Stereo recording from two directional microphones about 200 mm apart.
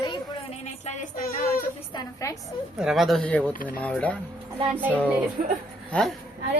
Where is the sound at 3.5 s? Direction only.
45° left (ahead or behind).